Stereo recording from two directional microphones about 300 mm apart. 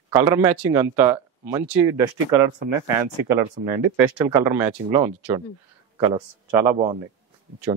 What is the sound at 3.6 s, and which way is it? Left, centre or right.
Speech, right.